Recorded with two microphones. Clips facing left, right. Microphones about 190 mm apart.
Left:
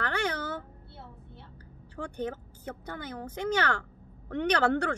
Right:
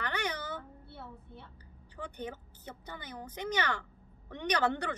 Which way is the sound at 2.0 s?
10° left (ahead or behind).